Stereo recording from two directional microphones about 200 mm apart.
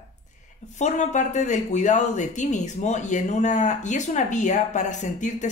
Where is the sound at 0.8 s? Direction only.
35° left (ahead or behind).